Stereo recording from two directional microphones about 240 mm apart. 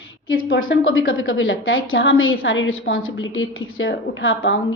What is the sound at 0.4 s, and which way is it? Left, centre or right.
A woman's voice, left.